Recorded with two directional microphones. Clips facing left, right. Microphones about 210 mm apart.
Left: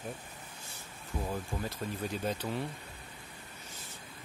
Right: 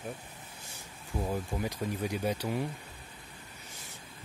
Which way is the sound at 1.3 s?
15° right (ahead or behind).